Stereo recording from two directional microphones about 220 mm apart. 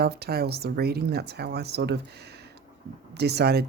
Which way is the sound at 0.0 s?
45° right (ahead or behind).